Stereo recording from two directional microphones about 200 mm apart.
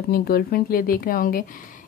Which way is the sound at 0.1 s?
50° left (ahead or behind).